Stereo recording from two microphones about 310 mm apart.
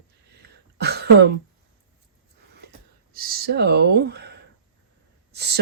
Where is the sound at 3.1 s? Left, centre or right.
Right.